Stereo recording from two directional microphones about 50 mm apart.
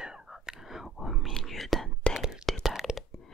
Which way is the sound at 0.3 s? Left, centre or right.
Centre.